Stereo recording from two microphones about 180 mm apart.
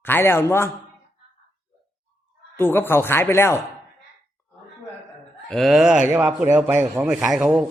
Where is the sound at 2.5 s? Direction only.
10° left (ahead or behind).